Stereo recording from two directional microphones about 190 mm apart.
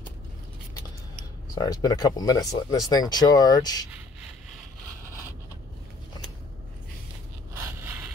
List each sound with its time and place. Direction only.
1.5 s speech: 20° left (ahead or behind)
7.5 s scrape: 10° right (ahead or behind)